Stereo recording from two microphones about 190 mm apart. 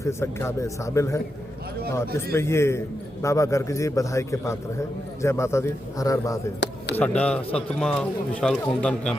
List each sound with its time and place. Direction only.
0.0 s a man's voice: 15° left (ahead or behind)
6.9 s a man's voice: 5° left (ahead or behind)